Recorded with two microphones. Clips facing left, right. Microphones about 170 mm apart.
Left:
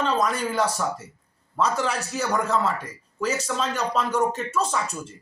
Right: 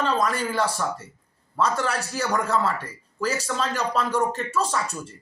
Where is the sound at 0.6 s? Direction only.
5° left (ahead or behind).